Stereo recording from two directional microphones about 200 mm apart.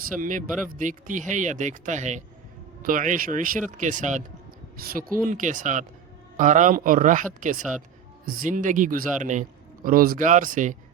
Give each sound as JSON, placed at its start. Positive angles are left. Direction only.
{"t": 0.2, "sound": "a man's voice", "side_deg": -40}